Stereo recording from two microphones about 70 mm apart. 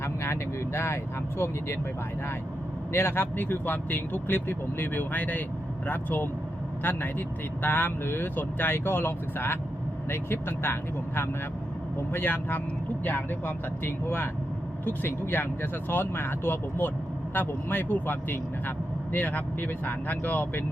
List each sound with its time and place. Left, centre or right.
0.0 s vehicle: left
1.4 s speech: left
2.9 s speech: left